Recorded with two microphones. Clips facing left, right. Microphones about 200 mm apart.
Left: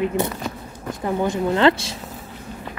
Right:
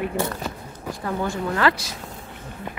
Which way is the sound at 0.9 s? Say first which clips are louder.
Left 5 dB; 20° left (ahead or behind).